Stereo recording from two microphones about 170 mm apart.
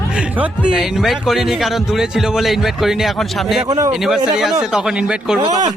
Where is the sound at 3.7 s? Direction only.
20° right (ahead or behind).